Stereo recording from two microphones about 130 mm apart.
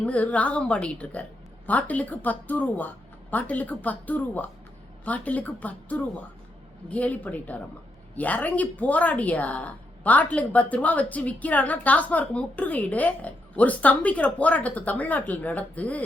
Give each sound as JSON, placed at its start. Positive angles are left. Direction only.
{"t": 0.0, "sound": "a woman's voice", "side_deg": 10}